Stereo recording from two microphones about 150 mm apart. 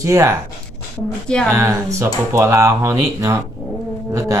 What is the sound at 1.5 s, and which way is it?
Speech, 20° right (ahead or behind).